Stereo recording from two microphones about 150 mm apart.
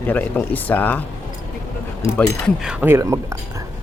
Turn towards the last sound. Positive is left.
turn(degrees=-20)  # may be behind; listen again after turning